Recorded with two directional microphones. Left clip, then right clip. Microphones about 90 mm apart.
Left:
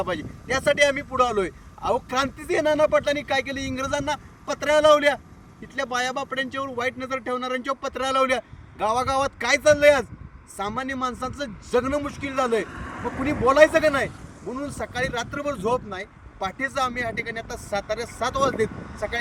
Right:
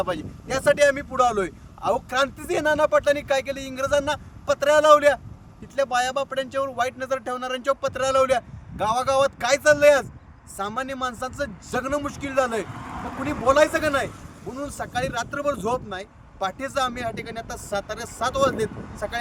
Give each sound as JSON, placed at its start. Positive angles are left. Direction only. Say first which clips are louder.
{"t": 0.0, "sound": "speech", "louder": "right 1 dB", "side_deg": -50}
{"t": 12.6, "sound": "speech", "louder": "left 2 dB", "side_deg": -25}
{"t": 13.5, "sound": "speech", "louder": "left 2 dB", "side_deg": -60}